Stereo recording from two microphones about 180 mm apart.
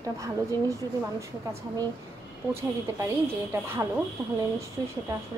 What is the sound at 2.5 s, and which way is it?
A woman's voice, 15° right (ahead or behind).